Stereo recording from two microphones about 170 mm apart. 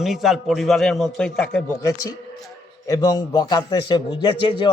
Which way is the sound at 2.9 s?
20° left (ahead or behind).